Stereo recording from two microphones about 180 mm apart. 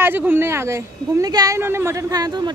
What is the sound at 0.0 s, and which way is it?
A woman's voice, 10° right (ahead or behind).